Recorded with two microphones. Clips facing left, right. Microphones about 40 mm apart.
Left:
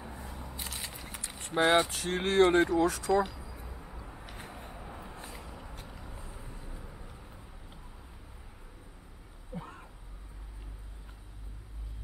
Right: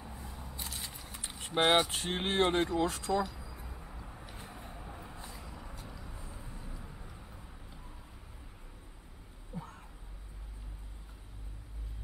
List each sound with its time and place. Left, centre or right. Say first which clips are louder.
0.0 s single-lens reflex camera: left 3 dB; centre
0.4 s a sound: left 1 dB; centre
0.8 s vehicle: left 3 dB; left
1.5 s speech: left 2 dB; right
1.9 s speech: left 3 dB; centre
3.1 s speech: left 4 dB; left
3.3 s vehicle: left 2 dB; centre
9.5 s a sound: left 2 dB; left